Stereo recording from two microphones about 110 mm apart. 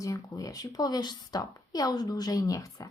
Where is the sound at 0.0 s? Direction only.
30° left (ahead or behind).